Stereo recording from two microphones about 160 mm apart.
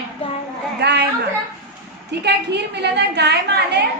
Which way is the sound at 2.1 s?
90° right.